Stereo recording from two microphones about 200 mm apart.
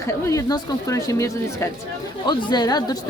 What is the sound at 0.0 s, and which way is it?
A woman's voice, 15° left (ahead or behind).